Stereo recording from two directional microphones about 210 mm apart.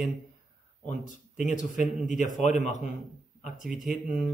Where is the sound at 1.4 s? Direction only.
35° left (ahead or behind).